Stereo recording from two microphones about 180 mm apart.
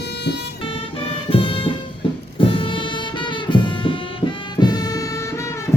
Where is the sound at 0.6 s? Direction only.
30° left (ahead or behind).